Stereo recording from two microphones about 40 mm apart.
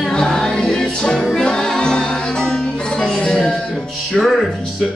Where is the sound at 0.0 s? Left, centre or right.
Centre.